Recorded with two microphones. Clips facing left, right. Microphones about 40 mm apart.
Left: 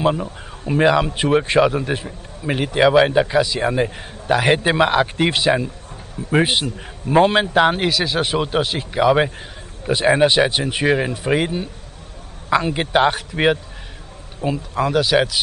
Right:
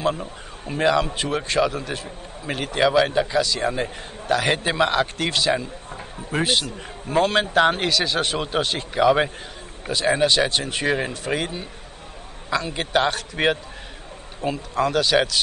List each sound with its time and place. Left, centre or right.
0.0 s a man's voice: left
9.8 s a man's voice: left
14.4 s a man's voice: centre